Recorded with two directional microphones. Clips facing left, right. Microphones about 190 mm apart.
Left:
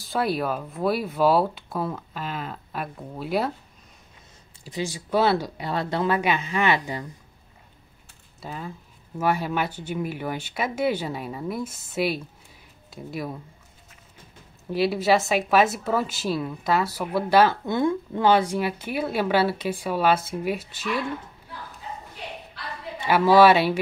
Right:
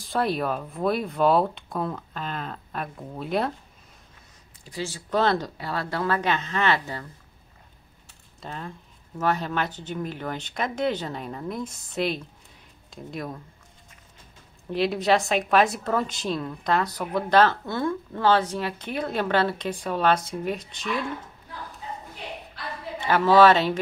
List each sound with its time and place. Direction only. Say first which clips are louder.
0.0 s speech: even; centre (ahead or behind)
4.6 s speech: left 3 dB; 15° left (ahead or behind)
8.4 s speech: left 1 dB; 5° left (ahead or behind)
14.7 s speech: left 1 dB; 5° left (ahead or behind)
23.0 s speech: left 1 dB; 10° left (ahead or behind)